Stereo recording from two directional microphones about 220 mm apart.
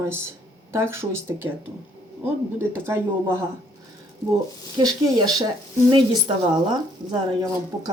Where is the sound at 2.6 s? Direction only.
10° right (ahead or behind).